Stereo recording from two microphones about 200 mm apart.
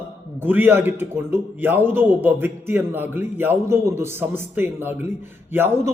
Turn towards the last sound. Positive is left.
turn(degrees=-10)  # may be behind; listen again after turning